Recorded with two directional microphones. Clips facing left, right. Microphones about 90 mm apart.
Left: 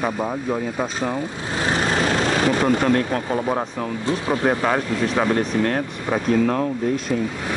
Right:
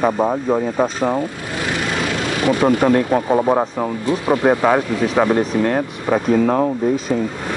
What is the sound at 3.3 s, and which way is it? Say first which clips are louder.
Speech: right 7 dB; 25° right (ahead or behind).